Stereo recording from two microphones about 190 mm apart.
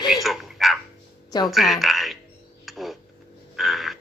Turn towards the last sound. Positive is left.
turn(degrees=0)  # may be behind; listen again after turning